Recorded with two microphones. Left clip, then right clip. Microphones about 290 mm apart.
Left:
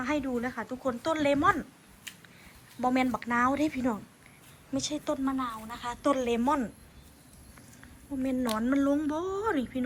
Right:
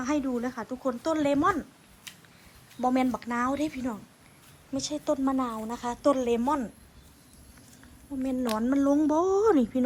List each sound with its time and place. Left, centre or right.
0.0 s speech: centre
2.8 s speech: centre
8.2 s speech: centre